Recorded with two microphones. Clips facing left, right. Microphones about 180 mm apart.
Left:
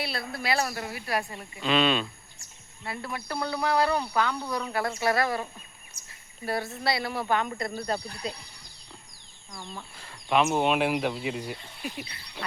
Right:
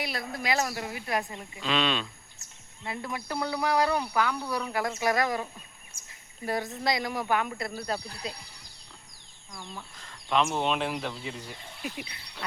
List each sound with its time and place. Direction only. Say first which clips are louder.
0.0 s speech: left 1 dB; 15° right (ahead or behind)
1.5 s speech: left 4 dB; centre (ahead or behind)
2.8 s speech: even; 15° right (ahead or behind); by 8.4 s centre (ahead or behind)
9.7 s speech: left 1 dB; 10° left (ahead or behind)
11.9 s speech: left 1 dB; 15° right (ahead or behind)